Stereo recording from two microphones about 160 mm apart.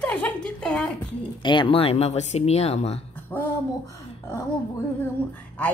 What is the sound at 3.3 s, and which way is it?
Speech, 10° left (ahead or behind).